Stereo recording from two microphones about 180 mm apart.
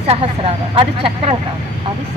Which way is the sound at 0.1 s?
30° right (ahead or behind).